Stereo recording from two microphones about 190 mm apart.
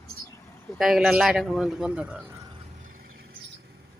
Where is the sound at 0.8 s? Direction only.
Centre (ahead or behind).